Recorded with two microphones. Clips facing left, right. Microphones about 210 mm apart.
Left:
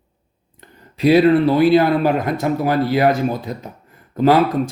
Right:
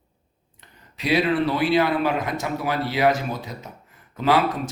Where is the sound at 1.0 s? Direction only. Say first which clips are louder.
Left 9 dB; 45° left (ahead or behind).